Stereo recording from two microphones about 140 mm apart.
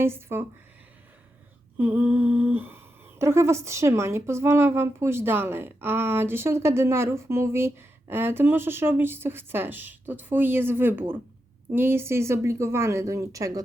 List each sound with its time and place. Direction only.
0.0 s speech: 15° right (ahead or behind)
1.8 s speech: 15° right (ahead or behind)